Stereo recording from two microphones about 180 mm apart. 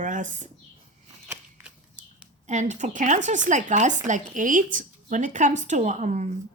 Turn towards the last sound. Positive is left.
turn(degrees=-40)  # may be behind; listen again after turning